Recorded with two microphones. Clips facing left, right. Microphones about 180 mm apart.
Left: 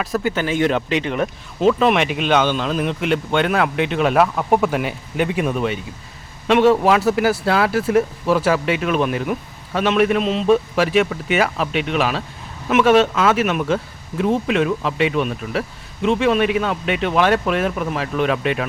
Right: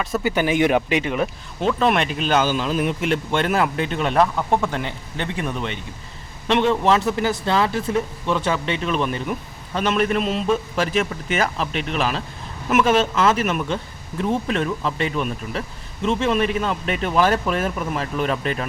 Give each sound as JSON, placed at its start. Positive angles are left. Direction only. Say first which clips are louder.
{"t": 0.0, "sound": "speech", "louder": "left 2 dB", "side_deg": 0}
{"t": 0.3, "sound": "speech", "louder": "right 3 dB", "side_deg": -15}
{"t": 1.1, "sound": "speech", "louder": "left 1 dB", "side_deg": 0}
{"t": 7.8, "sound": "speech", "louder": "left 6 dB", "side_deg": 90}
{"t": 8.3, "sound": "speech", "louder": "left 4 dB", "side_deg": 5}